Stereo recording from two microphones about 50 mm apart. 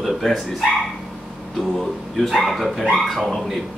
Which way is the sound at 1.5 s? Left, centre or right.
Centre.